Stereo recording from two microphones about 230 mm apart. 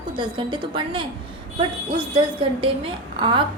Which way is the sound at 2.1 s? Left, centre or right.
Right.